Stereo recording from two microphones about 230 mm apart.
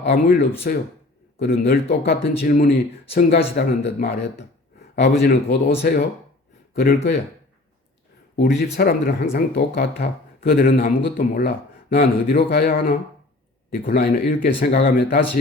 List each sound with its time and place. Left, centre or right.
0.0 s speech: left
8.8 s speech: left